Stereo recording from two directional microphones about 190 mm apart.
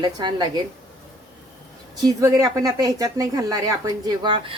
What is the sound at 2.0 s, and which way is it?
A woman's voice, 15° right (ahead or behind).